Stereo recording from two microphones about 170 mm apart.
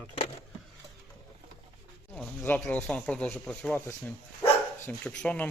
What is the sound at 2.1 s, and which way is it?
Speech, 10° left (ahead or behind).